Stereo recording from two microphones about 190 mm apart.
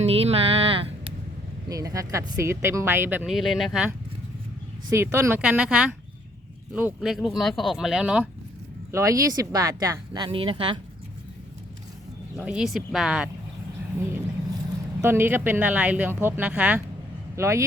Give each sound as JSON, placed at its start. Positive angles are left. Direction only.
{"t": 0.0, "sound": "music", "side_deg": -30}
{"t": 1.7, "sound": "speech", "side_deg": -15}
{"t": 4.9, "sound": "speech", "side_deg": -15}
{"t": 8.9, "sound": "speech", "side_deg": -15}
{"t": 12.4, "sound": "speech", "side_deg": -5}
{"t": 15.0, "sound": "speech", "side_deg": -10}